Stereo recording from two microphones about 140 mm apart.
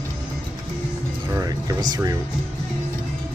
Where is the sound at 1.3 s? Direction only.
25° right (ahead or behind).